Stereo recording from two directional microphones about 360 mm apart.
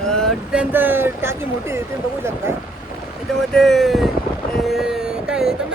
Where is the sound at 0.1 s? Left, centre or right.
Centre.